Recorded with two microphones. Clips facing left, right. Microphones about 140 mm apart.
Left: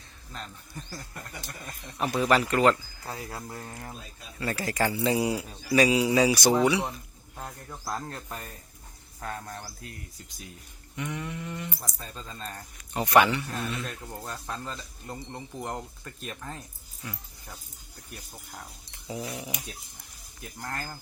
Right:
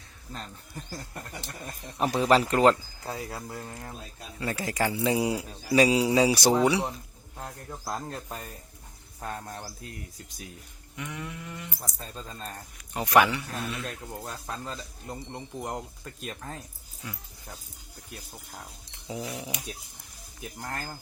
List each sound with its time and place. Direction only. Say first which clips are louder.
1.6 s speech: right 3 dB; 35° right (ahead or behind)
3.1 s speech: right 2 dB; 5° right (ahead or behind)
4.4 s a man's voice: left 1 dB; 15° right (ahead or behind)
6.4 s a man's voice: even; 5° right (ahead or behind)
10.9 s speech: left 3 dB; 5° right (ahead or behind)
19.0 s dog: even; 15° right (ahead or behind)
19.3 s speech: even; 5° left (ahead or behind)